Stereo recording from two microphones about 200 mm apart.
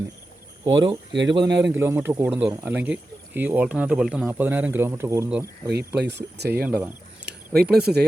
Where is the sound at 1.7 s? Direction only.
10° right (ahead or behind).